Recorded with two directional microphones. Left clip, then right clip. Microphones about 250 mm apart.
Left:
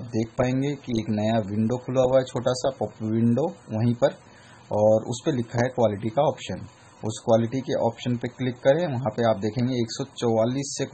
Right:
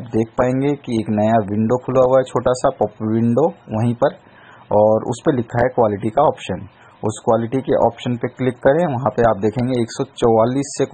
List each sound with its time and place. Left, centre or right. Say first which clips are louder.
0.2 s speech: right 8 dB; centre